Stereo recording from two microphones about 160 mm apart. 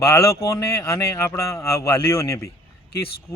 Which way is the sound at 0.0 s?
15° left (ahead or behind).